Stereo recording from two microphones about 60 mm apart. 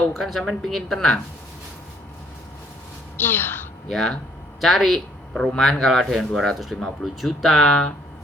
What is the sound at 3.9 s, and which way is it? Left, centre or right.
Speech, centre.